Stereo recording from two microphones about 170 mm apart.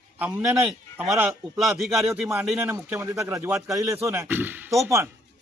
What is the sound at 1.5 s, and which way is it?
Speech, centre (ahead or behind).